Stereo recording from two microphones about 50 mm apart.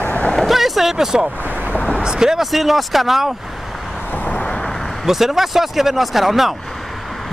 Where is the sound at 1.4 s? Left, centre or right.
Right.